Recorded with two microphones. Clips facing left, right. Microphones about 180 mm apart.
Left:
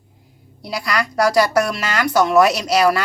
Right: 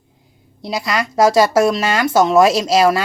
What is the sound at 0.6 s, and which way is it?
A woman's voice, 25° right (ahead or behind).